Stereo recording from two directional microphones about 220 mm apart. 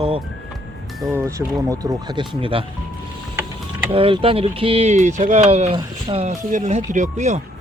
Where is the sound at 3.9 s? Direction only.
25° right (ahead or behind).